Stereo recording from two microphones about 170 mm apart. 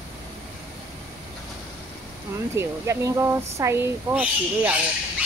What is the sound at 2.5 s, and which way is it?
Speech, 15° right (ahead or behind).